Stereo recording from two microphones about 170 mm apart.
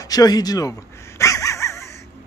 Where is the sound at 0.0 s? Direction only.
20° left (ahead or behind).